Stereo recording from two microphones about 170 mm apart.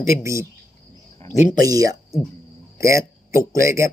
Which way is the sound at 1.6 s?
20° right (ahead or behind).